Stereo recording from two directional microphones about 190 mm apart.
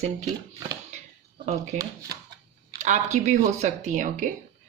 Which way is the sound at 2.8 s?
40° right (ahead or behind).